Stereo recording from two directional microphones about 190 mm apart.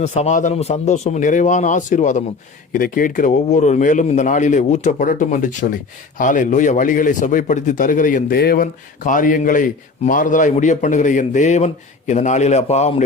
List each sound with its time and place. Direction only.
0.0 s a man's voice: 35° left (ahead or behind)